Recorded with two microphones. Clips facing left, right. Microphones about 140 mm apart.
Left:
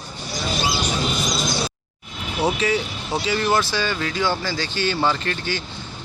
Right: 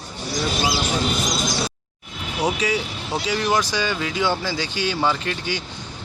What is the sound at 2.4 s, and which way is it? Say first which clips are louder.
A man's voice: left 1 dB; 10° right (ahead or behind).